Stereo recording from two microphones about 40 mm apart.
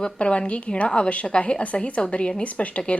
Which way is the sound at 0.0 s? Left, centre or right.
Left.